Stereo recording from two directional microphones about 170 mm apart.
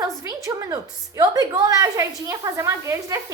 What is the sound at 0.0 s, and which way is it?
A woman's voice, 20° right (ahead or behind).